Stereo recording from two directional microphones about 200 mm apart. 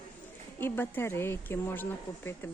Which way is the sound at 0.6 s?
10° left (ahead or behind).